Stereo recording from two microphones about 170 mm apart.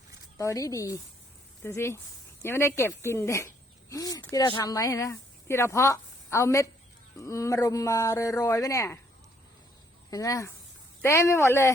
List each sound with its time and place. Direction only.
0.3 s a woman's voice: 20° left (ahead or behind)
10.1 s speech: 20° left (ahead or behind)